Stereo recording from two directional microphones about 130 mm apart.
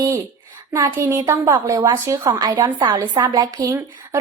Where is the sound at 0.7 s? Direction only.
25° right (ahead or behind).